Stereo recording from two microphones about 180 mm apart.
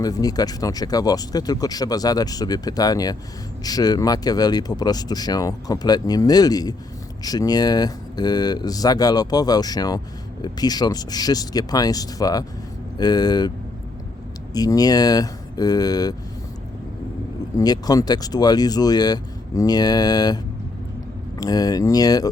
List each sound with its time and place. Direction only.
0.0 s speech: 20° left (ahead or behind)
14.5 s speech: 20° left (ahead or behind)
17.6 s speech: 20° left (ahead or behind)